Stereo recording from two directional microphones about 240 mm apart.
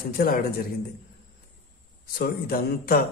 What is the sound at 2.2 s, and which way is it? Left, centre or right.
Speech, left.